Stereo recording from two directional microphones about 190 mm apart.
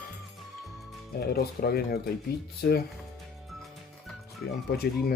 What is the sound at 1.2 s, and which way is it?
Speech, 55° left (ahead or behind).